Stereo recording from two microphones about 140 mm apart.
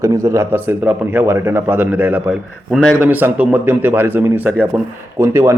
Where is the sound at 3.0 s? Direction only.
10° right (ahead or behind).